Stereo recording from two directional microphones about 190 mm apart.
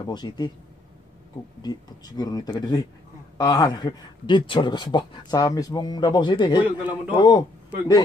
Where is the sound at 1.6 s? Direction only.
20° left (ahead or behind).